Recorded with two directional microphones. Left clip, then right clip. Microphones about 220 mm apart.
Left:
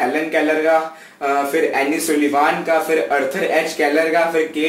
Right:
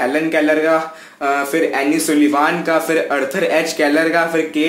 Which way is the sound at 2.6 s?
50° right (ahead or behind).